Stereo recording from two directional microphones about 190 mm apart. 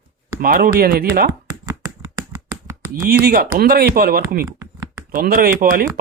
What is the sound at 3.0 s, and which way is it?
Speech, 55° right (ahead or behind).